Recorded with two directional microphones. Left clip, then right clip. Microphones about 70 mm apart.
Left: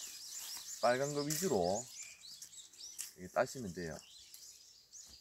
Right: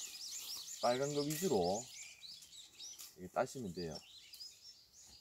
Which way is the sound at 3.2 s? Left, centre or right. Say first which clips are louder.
Left 3 dB; left.